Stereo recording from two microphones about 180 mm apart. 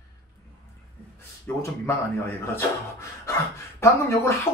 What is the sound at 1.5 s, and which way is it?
Speech, 15° left (ahead or behind).